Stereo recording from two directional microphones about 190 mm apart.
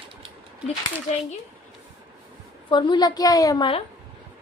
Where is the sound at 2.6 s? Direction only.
25° left (ahead or behind).